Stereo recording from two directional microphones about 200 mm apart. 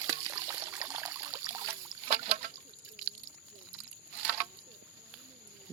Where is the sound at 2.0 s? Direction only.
35° right (ahead or behind).